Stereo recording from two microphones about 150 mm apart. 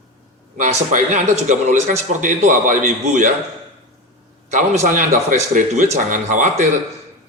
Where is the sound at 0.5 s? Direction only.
55° right (ahead or behind).